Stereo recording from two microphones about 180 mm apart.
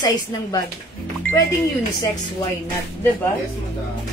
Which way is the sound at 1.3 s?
10° left (ahead or behind).